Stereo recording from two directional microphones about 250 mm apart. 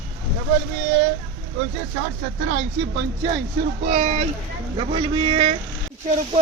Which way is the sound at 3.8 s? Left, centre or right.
Right.